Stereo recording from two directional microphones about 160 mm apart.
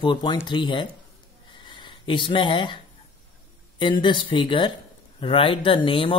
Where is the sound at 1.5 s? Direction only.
30° left (ahead or behind).